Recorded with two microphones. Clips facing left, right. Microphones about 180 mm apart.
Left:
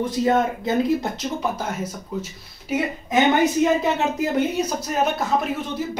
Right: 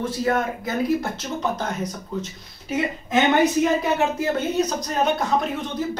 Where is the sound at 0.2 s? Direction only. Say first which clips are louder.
Left 4 dB; 25° left (ahead or behind).